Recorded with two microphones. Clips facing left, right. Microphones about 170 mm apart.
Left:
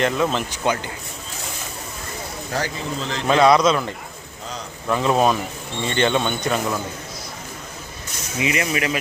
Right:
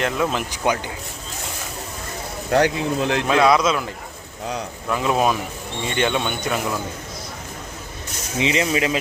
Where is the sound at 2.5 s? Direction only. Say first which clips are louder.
Right 8 dB; 65° right (ahead or behind).